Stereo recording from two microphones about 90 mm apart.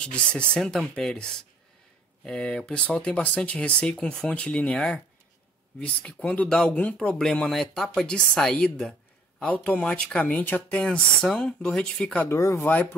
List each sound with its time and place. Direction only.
0.0 s speech: 10° left (ahead or behind)
6.0 s speech: 15° left (ahead or behind)
10.8 s speech: 10° left (ahead or behind)
12.3 s speech: 30° left (ahead or behind)